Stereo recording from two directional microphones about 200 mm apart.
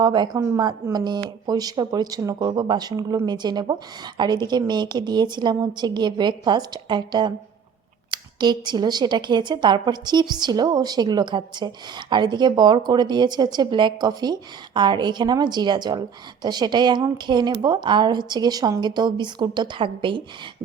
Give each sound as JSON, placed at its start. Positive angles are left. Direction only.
{"t": 0.0, "sound": "a woman's voice", "side_deg": -20}